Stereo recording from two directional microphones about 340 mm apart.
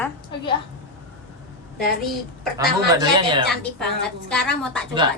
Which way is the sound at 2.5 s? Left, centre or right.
Centre.